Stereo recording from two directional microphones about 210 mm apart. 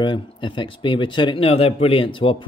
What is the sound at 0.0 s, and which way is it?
Speech, 20° left (ahead or behind).